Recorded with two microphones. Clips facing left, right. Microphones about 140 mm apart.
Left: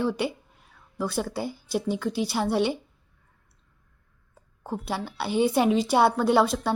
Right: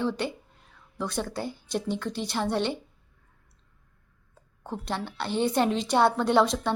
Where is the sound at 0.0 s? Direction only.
10° left (ahead or behind).